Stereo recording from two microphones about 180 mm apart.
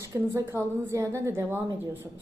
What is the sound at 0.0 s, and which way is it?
A woman's voice, 15° right (ahead or behind).